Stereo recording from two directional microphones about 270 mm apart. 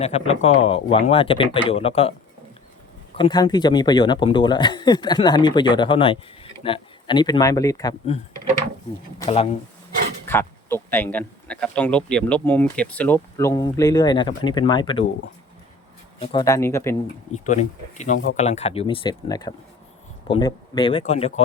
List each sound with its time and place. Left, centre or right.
0.0 s speech: left
3.2 s speech: centre
9.2 s speech: left
10.2 s speech: centre
16.2 s speech: centre
17.3 s speech: left